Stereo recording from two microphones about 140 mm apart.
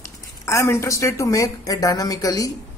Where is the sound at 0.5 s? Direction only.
20° left (ahead or behind).